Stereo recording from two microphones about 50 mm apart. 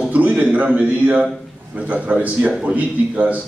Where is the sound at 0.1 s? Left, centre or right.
Right.